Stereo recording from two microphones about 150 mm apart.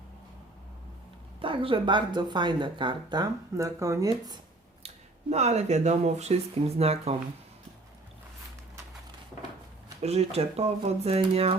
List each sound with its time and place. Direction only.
1.4 s speech: 35° right (ahead or behind)
5.3 s speech: 50° right (ahead or behind)
10.0 s speech: 45° right (ahead or behind)